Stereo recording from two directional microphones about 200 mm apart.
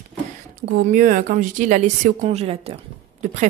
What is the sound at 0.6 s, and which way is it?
A woman's voice, 45° right (ahead or behind).